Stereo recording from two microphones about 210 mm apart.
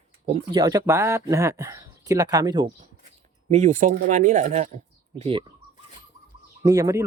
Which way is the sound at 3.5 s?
35° right (ahead or behind).